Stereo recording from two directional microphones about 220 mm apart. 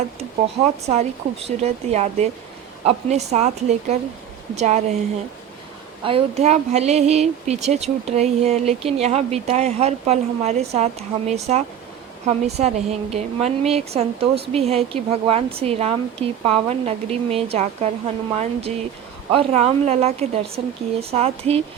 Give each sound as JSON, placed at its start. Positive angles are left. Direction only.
{"t": 0.2, "sound": "a woman's voice", "side_deg": -30}
{"t": 6.0, "sound": "speech", "side_deg": -25}